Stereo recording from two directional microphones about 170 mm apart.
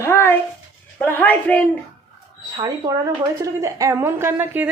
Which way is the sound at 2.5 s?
25° right (ahead or behind).